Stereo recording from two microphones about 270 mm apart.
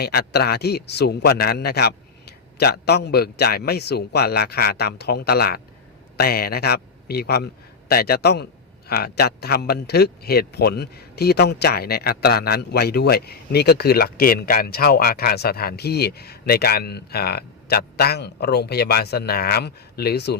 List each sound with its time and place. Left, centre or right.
0.0 s a man's voice: left